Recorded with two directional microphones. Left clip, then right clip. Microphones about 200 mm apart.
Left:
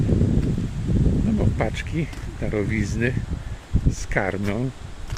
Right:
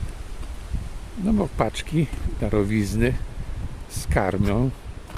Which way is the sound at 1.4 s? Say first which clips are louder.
Right 1 dB; 20° right (ahead or behind).